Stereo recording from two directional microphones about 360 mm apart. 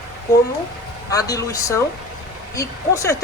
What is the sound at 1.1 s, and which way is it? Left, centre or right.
Speech, centre.